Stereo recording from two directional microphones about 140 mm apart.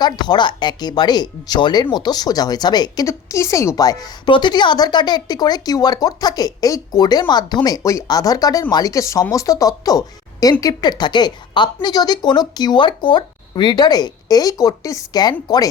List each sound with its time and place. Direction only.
0.0 s speech: 30° left (ahead or behind)